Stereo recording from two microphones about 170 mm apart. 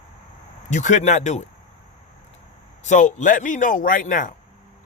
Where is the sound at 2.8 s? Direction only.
45° left (ahead or behind).